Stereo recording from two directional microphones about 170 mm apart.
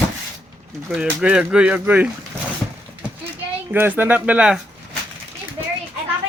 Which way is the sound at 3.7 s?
10° right (ahead or behind).